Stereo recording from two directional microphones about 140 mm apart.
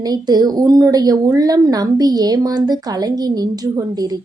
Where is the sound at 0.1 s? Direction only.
30° right (ahead or behind).